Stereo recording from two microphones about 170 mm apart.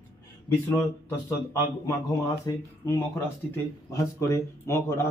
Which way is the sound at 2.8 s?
15° left (ahead or behind).